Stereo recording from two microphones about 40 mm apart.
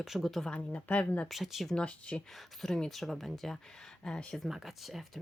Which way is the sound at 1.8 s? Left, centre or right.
Left.